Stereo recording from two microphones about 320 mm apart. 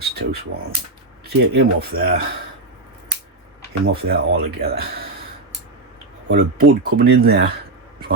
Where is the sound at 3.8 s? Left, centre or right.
Right.